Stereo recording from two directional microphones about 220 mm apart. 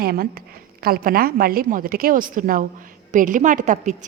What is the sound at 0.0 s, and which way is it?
A woman's voice, 40° right (ahead or behind).